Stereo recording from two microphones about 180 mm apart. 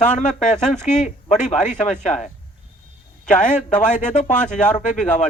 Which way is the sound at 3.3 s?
45° left (ahead or behind).